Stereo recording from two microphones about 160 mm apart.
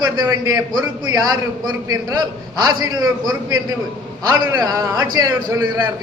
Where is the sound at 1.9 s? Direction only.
25° right (ahead or behind).